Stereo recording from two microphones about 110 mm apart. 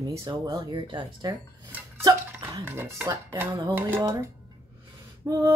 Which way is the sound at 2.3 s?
25° right (ahead or behind).